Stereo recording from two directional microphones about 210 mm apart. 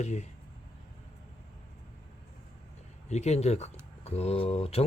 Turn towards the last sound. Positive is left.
turn(degrees=30)  # may be behind; listen again after turning